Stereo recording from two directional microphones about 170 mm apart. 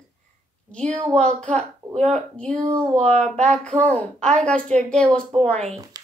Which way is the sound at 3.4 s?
5° left (ahead or behind).